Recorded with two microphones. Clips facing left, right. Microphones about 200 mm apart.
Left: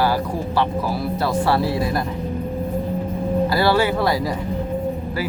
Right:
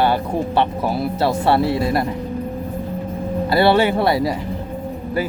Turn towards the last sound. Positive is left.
turn(degrees=-25)  # may be behind; listen again after turning